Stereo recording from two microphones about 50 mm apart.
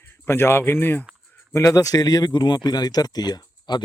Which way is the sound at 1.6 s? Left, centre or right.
Left.